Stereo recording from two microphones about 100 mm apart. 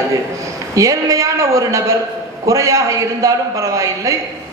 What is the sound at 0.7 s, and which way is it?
A man's voice, 35° right (ahead or behind).